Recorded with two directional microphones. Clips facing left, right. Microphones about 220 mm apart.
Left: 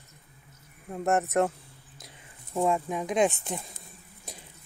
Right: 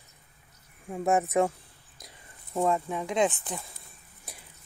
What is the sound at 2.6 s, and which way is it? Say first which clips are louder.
Speech: left 1 dB; 15° left (ahead or behind).